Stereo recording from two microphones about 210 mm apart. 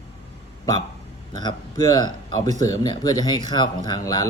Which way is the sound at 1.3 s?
20° left (ahead or behind).